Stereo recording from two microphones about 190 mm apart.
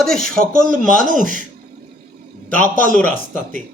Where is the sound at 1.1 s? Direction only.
45° right (ahead or behind).